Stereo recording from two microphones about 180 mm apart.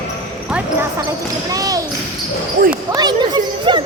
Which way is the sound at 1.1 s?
20° right (ahead or behind).